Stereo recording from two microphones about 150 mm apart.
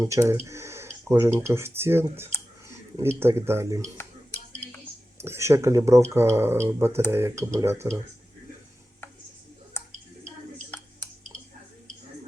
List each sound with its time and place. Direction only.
0.0 s speech: 20° right (ahead or behind)
5.1 s speech: 15° right (ahead or behind)
10.7 s a sound: 10° left (ahead or behind)